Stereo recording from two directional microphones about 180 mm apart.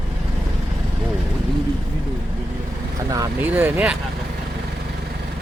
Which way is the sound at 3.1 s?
15° right (ahead or behind).